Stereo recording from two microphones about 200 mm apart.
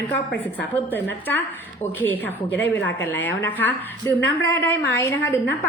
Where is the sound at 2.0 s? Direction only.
10° left (ahead or behind).